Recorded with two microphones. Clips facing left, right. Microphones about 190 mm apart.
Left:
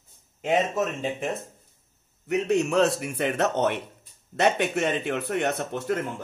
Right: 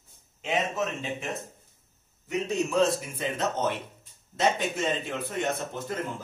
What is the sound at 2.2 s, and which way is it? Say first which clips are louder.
A man's voice: left 5 dB; 65° left (ahead or behind).